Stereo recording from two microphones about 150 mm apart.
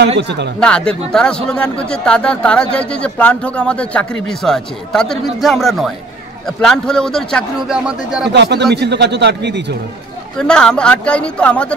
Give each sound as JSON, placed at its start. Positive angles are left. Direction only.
{"t": 0.6, "sound": "a man's voice", "side_deg": 5}
{"t": 8.7, "sound": "speech", "side_deg": -90}
{"t": 10.3, "sound": "speech", "side_deg": 5}